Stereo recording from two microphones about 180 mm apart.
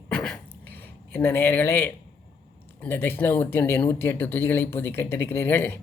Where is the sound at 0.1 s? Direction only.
5° left (ahead or behind).